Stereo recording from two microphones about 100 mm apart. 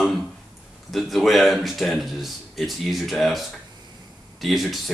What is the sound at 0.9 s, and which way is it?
Speech, centre (ahead or behind).